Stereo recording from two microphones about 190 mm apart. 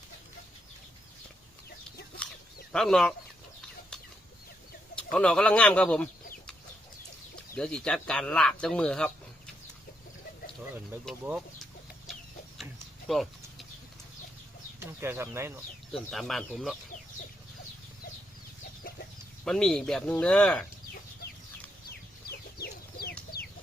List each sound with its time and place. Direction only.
2.7 s speech: centre (ahead or behind)
5.1 s speech: 5° left (ahead or behind)
7.5 s speech: 5° left (ahead or behind)
11.0 s speech: 5° right (ahead or behind)
13.1 s a sound: centre (ahead or behind)
14.8 s speech: 15° right (ahead or behind)
15.9 s speech: centre (ahead or behind)
19.5 s speech: 5° left (ahead or behind)
21.8 s chicken: 55° left (ahead or behind)